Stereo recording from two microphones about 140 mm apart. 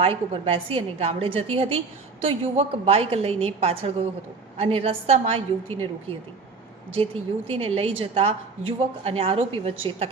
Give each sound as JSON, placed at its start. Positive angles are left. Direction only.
{"t": 0.0, "sound": "a woman's voice", "side_deg": -45}